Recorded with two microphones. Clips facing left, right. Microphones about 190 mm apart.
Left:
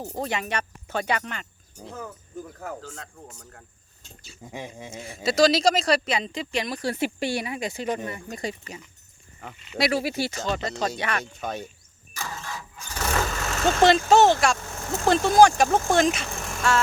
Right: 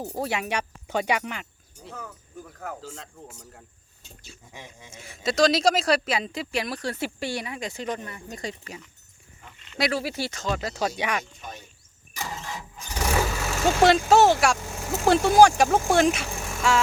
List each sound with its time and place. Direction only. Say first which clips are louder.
0.0 s speech: right 1 dB; 10° right (ahead or behind)
2.8 s speech: even; 5° right (ahead or behind)
4.5 s speech: left 9 dB; 60° left (ahead or behind)
5.0 s speech: left 2 dB; 5° left (ahead or behind)
6.8 s speech: left 3 dB; 15° left (ahead or behind)
9.9 s speech: left 3 dB; 15° left (ahead or behind)
10.4 s speech: right 3 dB; 5° right (ahead or behind)
11.3 s speech: left 9 dB; 75° left (ahead or behind)
12.1 s engine starting: right 1 dB; 20° right (ahead or behind)